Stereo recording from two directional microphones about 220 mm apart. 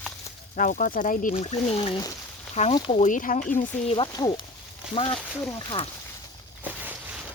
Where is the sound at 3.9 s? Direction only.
20° left (ahead or behind).